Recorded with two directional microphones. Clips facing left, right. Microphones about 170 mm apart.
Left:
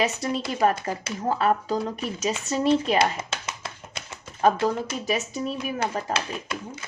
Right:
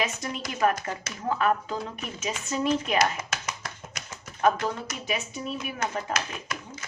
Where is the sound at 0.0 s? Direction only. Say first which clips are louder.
Left 5 dB; 30° left (ahead or behind).